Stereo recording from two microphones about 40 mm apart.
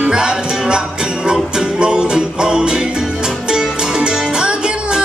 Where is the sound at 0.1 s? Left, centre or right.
Centre.